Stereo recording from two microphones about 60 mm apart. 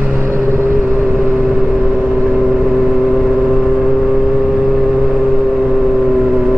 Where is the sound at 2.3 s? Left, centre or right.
Centre.